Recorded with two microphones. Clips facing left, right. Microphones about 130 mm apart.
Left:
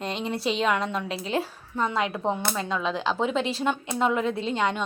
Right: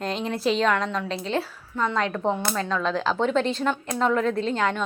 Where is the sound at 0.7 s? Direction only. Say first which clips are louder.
Right 1 dB; 10° left (ahead or behind).